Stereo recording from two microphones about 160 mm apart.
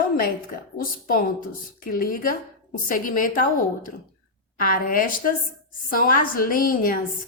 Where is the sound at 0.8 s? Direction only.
65° left (ahead or behind).